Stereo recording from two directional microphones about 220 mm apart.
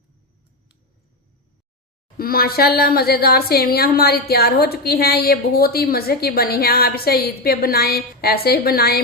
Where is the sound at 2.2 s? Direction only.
45° left (ahead or behind).